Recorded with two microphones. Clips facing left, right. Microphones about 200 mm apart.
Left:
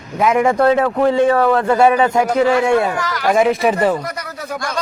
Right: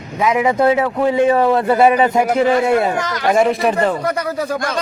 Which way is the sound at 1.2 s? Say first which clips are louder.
Even; 20° right (ahead or behind).